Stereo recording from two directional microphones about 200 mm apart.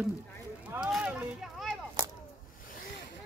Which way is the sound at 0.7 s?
5° right (ahead or behind).